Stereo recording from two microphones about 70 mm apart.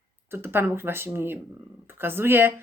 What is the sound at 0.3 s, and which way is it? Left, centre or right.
Speech, right.